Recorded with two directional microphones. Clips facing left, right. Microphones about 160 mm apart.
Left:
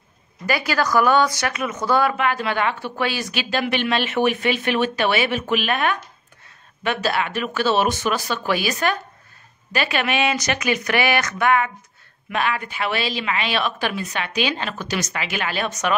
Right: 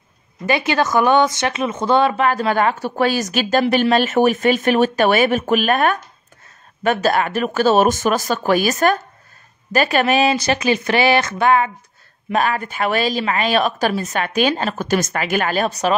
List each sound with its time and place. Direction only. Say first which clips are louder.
0.5 s speech: right 3 dB; 25° right (ahead or behind)
2.2 s a woman's voice: right 5 dB; 40° right (ahead or behind)
12.3 s a woman's voice: right 5 dB; 40° right (ahead or behind)